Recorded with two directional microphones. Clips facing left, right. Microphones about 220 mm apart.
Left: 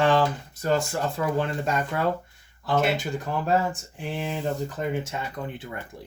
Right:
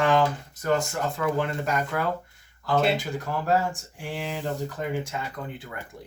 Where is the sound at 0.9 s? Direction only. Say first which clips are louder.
Left 1 dB; 30° left (ahead or behind).